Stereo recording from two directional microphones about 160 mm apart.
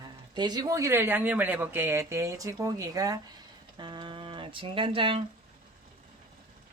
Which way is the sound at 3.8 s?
30° right (ahead or behind).